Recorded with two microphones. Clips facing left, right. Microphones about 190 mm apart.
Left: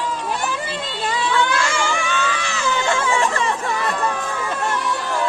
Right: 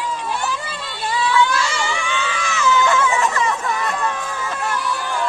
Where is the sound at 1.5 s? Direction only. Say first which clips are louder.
Left 1 dB; 55° left (ahead or behind); by 3.9 s 30° left (ahead or behind).